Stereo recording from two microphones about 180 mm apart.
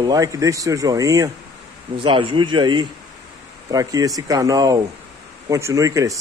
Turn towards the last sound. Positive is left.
turn(degrees=-20)  # may be behind; listen again after turning